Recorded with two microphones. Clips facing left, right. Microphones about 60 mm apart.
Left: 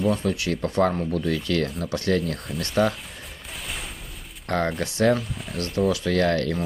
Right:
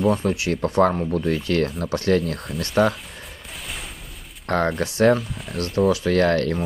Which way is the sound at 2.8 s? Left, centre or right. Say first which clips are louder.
Right 3 dB; right.